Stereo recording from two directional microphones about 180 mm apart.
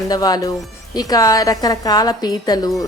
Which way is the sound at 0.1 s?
20° left (ahead or behind).